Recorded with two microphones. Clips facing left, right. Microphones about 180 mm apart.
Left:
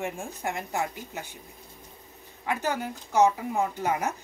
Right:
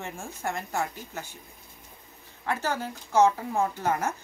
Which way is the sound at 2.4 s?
15° left (ahead or behind).